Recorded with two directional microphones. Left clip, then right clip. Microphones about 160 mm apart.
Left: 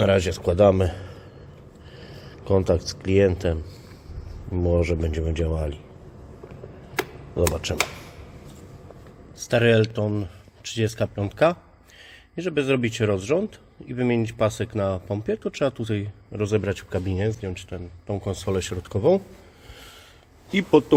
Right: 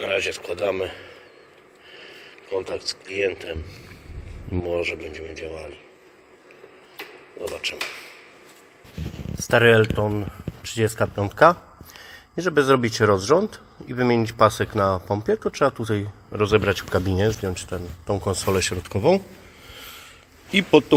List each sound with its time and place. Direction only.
0.1 s speech: 20° left (ahead or behind)
2.0 s a sound: 20° left (ahead or behind)
2.6 s speech: 20° left (ahead or behind)
4.5 s speech: 10° left (ahead or behind)
7.5 s speech: 35° left (ahead or behind)
9.4 s a sound: 30° left (ahead or behind)
9.6 s speech: 40° left (ahead or behind); by 13.5 s 10° left (ahead or behind)
14.3 s speech: 40° left (ahead or behind)
14.7 s speech: 10° left (ahead or behind)
16.3 s speech: 40° left (ahead or behind)
16.9 s speech: centre (ahead or behind)
17.4 s speech: 10° right (ahead or behind); by 19.2 s 15° left (ahead or behind)
19.7 s a sound: 30° left (ahead or behind)
20.5 s speech: 20° left (ahead or behind)